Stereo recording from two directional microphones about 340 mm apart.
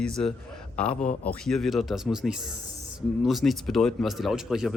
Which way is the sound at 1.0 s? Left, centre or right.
Left.